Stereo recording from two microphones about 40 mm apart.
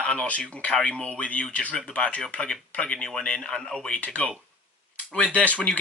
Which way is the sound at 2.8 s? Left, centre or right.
Left.